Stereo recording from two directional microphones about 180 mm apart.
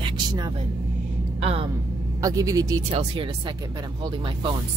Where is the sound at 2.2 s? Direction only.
20° right (ahead or behind).